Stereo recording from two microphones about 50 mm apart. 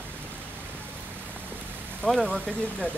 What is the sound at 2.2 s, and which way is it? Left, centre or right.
Speech, centre.